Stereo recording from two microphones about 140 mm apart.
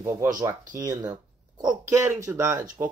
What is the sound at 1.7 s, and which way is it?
Speech, 15° right (ahead or behind).